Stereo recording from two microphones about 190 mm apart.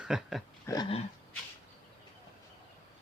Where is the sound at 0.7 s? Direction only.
15° left (ahead or behind).